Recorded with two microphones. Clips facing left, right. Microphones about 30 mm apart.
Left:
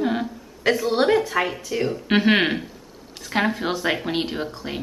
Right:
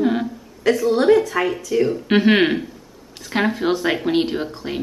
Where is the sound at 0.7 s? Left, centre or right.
Left.